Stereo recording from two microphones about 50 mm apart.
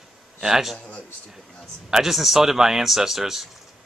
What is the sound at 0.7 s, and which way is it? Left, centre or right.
Speech, left.